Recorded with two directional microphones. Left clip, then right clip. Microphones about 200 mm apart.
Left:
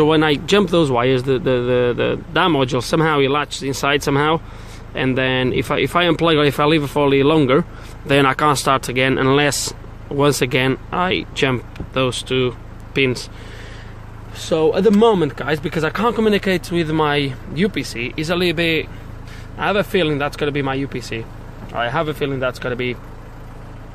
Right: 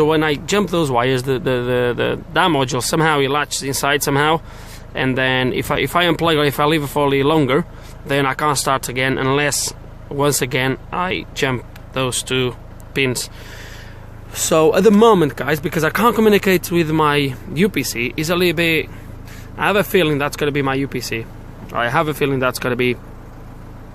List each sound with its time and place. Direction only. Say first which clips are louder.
0.0 s speech: left 1 dB; 10° left (ahead or behind)
14.3 s speech: right 3 dB; 25° right (ahead or behind)